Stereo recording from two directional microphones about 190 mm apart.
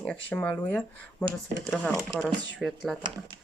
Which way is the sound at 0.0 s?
5° left (ahead or behind).